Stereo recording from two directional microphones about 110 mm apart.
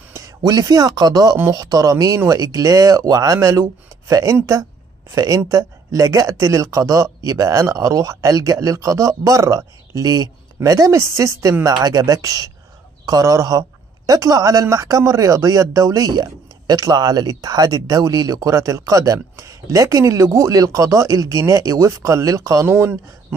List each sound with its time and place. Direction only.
0.4 s a man's voice: 35° right (ahead or behind)